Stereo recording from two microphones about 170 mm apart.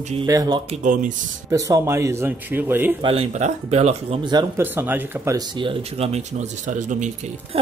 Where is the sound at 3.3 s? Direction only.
40° right (ahead or behind).